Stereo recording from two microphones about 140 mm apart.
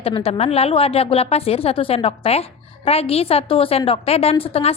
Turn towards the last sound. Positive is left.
turn(degrees=45)  # may be behind; listen again after turning